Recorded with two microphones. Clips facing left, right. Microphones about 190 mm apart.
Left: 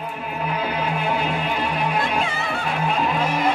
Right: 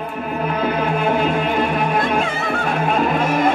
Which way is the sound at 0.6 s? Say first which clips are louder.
Right 7 dB; 50° right (ahead or behind).